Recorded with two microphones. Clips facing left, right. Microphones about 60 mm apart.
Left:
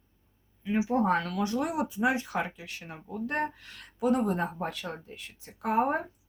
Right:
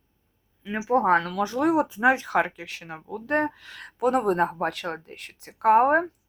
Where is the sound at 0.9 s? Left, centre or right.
Right.